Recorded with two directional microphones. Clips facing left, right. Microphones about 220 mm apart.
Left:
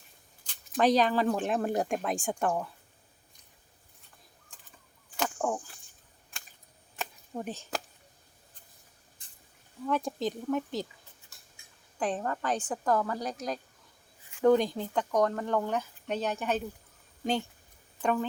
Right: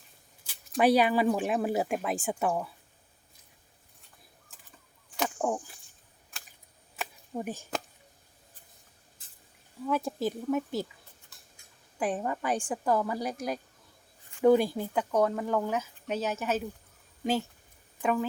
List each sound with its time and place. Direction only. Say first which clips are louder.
0.4 s speech: right 1 dB; 10° right (ahead or behind)
5.4 s speech: right 2 dB; 15° right (ahead or behind)
6.9 s a sound: right 1 dB; 5° right (ahead or behind)
9.2 s rodents: even; 5° right (ahead or behind)
9.8 s a woman's voice: right 1 dB; 5° right (ahead or behind)
11.9 s a woman's voice: right 1 dB; 10° right (ahead or behind)
18.0 s speech: right 1 dB; 5° right (ahead or behind)